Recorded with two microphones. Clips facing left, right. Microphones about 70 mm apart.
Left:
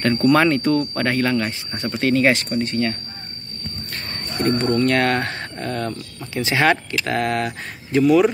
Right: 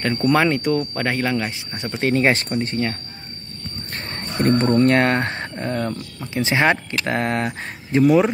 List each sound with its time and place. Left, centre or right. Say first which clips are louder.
0.0 s speech: left 2 dB; centre
3.9 s a sound: right 3 dB; right
4.5 s speech: right 3 dB; right